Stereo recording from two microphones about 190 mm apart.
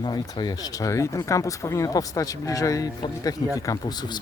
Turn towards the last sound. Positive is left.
turn(degrees=20)  # may be behind; listen again after turning